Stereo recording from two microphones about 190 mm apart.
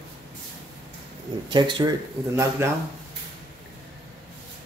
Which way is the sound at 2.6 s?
15° right (ahead or behind).